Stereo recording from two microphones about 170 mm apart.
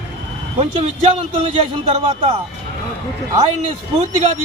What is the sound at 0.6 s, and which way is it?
A man's voice, 35° right (ahead or behind).